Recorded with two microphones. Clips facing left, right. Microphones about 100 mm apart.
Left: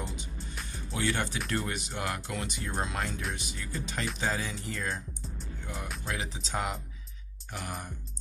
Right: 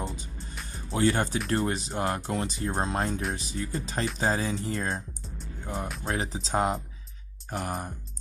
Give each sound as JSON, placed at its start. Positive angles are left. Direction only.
{"t": 0.9, "sound": "speech", "side_deg": -35}
{"t": 6.0, "sound": "speech", "side_deg": -35}